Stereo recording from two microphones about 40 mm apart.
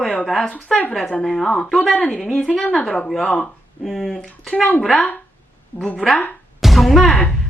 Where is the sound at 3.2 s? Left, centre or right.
Left.